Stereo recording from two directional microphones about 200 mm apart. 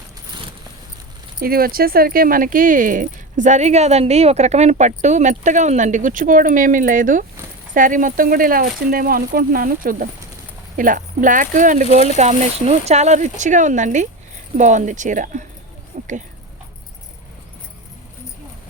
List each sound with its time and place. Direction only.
1.4 s speech: 50° right (ahead or behind)